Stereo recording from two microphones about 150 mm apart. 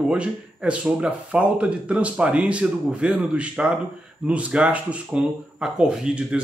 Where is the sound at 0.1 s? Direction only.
5° right (ahead or behind).